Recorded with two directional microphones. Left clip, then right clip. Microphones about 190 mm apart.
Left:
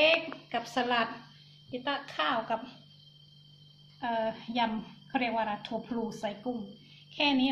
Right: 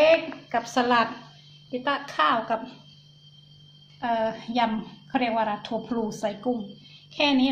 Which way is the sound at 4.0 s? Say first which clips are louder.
Right 6 dB; 10° right (ahead or behind).